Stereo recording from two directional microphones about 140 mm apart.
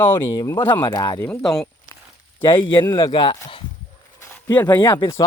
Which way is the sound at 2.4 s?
35° left (ahead or behind).